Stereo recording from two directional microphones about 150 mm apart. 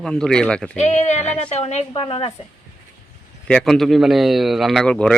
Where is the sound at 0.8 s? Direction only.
50° left (ahead or behind).